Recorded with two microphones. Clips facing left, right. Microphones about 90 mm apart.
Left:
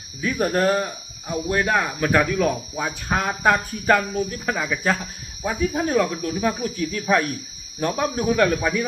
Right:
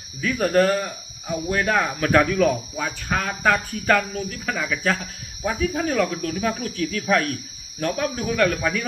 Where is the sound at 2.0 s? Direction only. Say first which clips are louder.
Right 2 dB; 5° left (ahead or behind).